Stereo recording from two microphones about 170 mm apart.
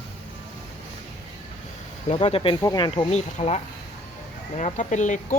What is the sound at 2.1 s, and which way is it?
Speech, 35° left (ahead or behind).